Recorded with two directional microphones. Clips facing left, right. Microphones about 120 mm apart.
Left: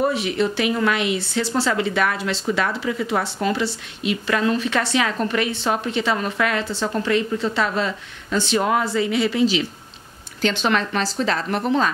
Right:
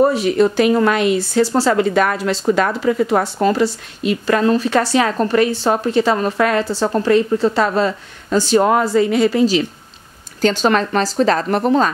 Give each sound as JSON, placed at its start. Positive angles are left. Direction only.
{"t": 0.0, "sound": "speech", "side_deg": -40}